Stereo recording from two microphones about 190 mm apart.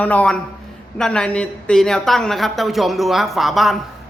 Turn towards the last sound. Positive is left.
turn(degrees=0)  # may be behind; listen again after turning